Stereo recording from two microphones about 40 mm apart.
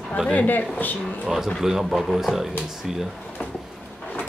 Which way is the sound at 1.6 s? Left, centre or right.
Centre.